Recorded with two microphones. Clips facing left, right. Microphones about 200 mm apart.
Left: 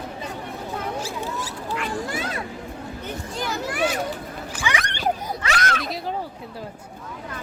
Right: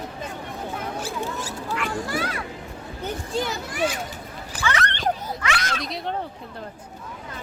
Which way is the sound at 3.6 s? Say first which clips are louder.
Left 2 dB; 60° left (ahead or behind).